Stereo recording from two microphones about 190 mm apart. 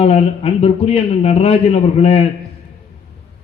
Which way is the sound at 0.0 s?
30° left (ahead or behind).